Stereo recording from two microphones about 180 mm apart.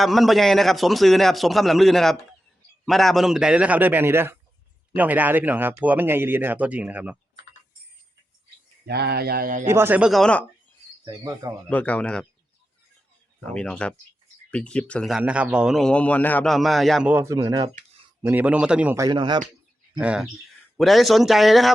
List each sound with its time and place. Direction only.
0.0 s speech: centre (ahead or behind)
8.9 s speech: 65° right (ahead or behind)
9.6 s speech: 15° right (ahead or behind); by 10.4 s 5° left (ahead or behind)
11.0 s speech: 20° right (ahead or behind)
11.7 s speech: 10° left (ahead or behind)
13.5 s speech: 5° left (ahead or behind); by 17.7 s 20° right (ahead or behind)
18.3 s speech: 10° right (ahead or behind)
19.0 s speech: 25° right (ahead or behind)
20.0 s speech: 5° right (ahead or behind)